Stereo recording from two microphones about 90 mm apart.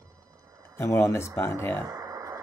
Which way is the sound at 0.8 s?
30° left (ahead or behind).